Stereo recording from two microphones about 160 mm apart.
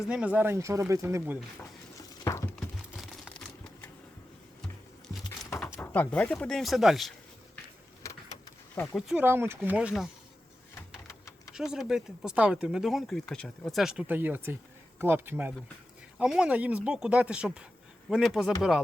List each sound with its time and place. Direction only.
0.1 s speech: 10° right (ahead or behind)
2.2 s a sound: 20° left (ahead or behind)
2.6 s crumpling: centre (ahead or behind)
5.8 s speech: 10° left (ahead or behind)
8.0 s vehicle: 20° left (ahead or behind)
8.7 s speech: 10° left (ahead or behind)
9.0 s speech: centre (ahead or behind)
9.2 s speech: 15° right (ahead or behind)
11.5 s speech: 5° right (ahead or behind)